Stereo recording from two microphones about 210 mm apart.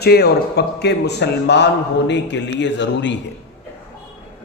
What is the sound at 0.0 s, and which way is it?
A man's voice, 50° left (ahead or behind).